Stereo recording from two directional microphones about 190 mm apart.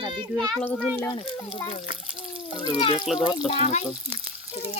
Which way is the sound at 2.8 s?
30° left (ahead or behind).